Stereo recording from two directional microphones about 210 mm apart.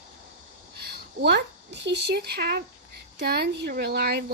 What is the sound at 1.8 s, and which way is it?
Speech, 55° right (ahead or behind).